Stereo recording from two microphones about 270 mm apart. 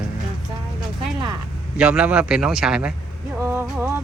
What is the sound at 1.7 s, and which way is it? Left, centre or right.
Speech, centre.